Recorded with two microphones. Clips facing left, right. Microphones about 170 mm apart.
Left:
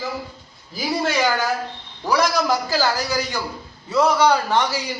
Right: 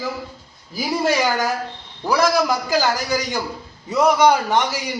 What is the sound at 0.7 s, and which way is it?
A man's voice, 10° right (ahead or behind).